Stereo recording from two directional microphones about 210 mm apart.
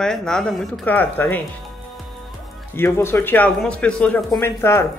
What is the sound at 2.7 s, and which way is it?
Speech, 10° left (ahead or behind).